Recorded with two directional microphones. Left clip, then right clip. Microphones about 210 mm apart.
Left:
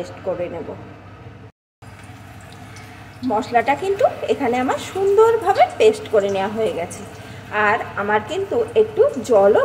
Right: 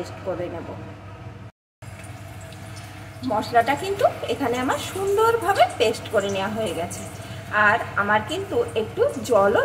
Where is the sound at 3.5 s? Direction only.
20° left (ahead or behind).